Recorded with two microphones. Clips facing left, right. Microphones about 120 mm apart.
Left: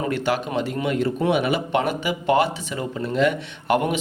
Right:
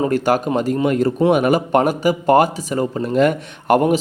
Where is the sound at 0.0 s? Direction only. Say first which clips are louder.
Right 6 dB; 45° right (ahead or behind).